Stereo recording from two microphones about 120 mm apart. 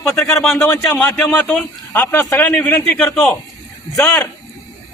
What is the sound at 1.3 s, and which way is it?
A man's voice, 10° left (ahead or behind).